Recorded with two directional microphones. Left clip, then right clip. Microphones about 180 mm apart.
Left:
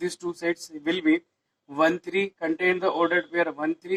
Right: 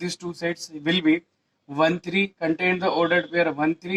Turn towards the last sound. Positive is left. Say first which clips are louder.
# right 4 dB
turn(degrees=-20)  # may be behind; listen again after turning